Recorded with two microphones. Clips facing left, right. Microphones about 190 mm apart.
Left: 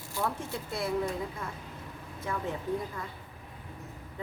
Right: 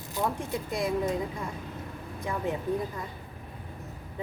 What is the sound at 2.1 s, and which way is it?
Speech, 15° right (ahead or behind).